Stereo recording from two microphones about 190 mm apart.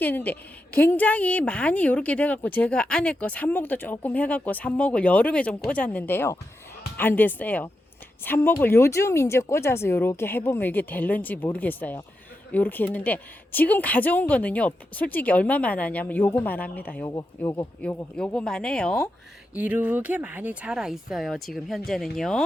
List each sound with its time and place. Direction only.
0.0 s a woman's voice: 10° left (ahead or behind)
19.5 s speech: 5° right (ahead or behind)